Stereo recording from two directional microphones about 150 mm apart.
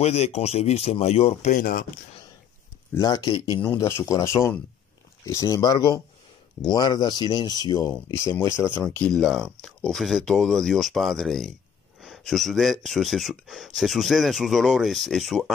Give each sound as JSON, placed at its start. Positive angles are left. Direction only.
{"t": 0.0, "sound": "speech", "side_deg": 45}
{"t": 1.5, "sound": "speech", "side_deg": 65}
{"t": 3.0, "sound": "speech", "side_deg": 25}